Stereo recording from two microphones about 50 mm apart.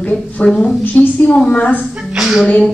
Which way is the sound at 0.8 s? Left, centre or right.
Left.